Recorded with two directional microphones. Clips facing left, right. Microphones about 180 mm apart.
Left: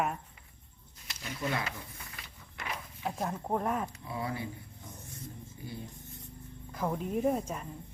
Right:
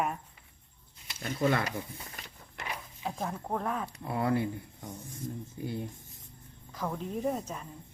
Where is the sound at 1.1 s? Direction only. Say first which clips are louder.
Right 6 dB; 50° right (ahead or behind).